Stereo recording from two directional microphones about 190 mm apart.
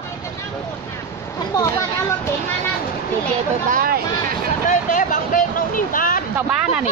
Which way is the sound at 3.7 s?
50° right (ahead or behind).